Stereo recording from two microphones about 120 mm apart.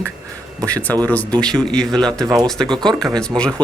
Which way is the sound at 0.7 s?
15° left (ahead or behind).